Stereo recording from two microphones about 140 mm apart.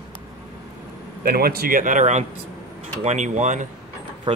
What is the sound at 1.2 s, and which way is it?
Speech, 90° right.